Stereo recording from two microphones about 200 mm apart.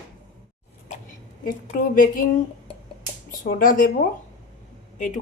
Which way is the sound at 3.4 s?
45° left (ahead or behind).